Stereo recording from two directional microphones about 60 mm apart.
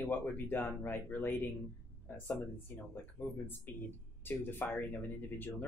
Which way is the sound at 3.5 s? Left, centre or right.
Left.